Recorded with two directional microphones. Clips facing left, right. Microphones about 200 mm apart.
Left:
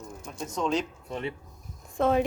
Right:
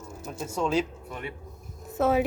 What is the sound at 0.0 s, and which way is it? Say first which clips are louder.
Speech: right 2 dB; 5° right (ahead or behind).